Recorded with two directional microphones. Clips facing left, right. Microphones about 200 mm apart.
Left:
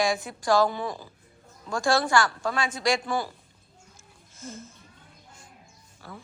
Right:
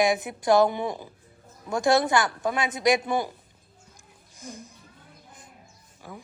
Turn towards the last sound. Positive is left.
turn(degrees=-15)  # may be behind; listen again after turning